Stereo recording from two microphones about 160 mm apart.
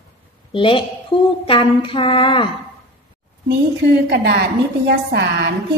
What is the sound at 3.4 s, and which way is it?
A woman's voice, 90° right.